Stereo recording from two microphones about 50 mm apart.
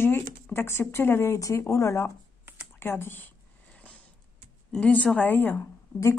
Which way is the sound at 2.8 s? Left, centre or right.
Left.